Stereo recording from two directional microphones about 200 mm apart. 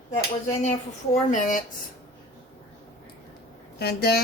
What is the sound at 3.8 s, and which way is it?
Speech, 50° left (ahead or behind).